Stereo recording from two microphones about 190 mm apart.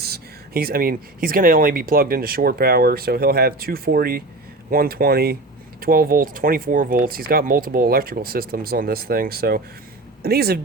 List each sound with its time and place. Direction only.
0.0 s speech: 55° right (ahead or behind)